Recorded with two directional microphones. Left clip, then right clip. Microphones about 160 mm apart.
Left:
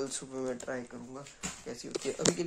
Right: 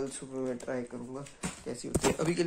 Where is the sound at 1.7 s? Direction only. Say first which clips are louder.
Right 7 dB; 5° left (ahead or behind).